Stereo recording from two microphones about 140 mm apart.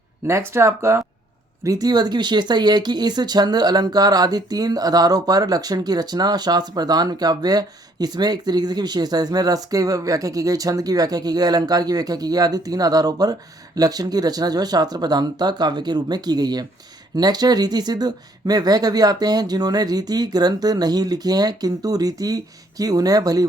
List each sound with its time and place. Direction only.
0.3 s speech: 20° right (ahead or behind)